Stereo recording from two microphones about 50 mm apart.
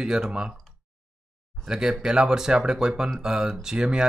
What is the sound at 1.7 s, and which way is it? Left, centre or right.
Speech, centre.